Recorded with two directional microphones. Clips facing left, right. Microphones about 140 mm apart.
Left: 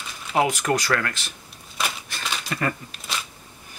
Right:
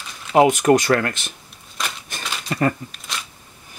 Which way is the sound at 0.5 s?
20° right (ahead or behind).